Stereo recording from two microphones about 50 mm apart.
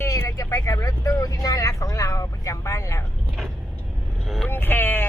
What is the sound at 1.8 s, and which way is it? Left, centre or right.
Vehicle, left.